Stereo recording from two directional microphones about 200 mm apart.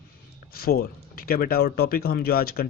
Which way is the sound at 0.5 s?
50° left (ahead or behind).